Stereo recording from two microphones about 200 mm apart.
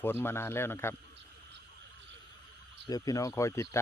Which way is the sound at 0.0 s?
10° left (ahead or behind).